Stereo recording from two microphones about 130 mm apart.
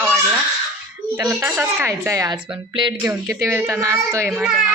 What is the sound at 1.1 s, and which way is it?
Speech, 25° right (ahead or behind).